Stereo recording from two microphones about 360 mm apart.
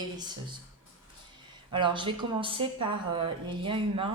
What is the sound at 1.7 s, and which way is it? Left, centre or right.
Speech, centre.